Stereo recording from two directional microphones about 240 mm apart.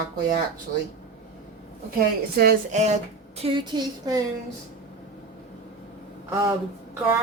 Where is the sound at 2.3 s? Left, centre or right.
Right; by 4.2 s centre.